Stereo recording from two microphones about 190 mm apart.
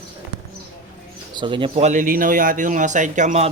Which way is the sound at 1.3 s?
25° right (ahead or behind).